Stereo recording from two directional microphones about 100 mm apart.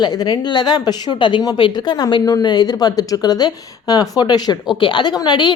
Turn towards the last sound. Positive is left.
turn(degrees=45)  # may be behind; listen again after turning